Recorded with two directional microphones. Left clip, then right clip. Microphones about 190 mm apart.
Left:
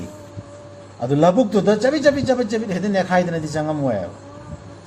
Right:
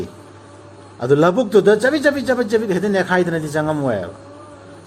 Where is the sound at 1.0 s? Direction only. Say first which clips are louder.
Right 1 dB; 40° right (ahead or behind).